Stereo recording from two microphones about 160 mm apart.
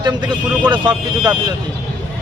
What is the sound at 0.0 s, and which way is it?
Speech, 25° right (ahead or behind).